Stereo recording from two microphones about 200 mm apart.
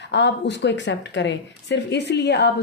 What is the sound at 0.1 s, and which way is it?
Speech, 60° left (ahead or behind).